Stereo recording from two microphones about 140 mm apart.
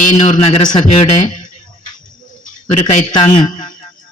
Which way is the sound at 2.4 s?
65° left (ahead or behind).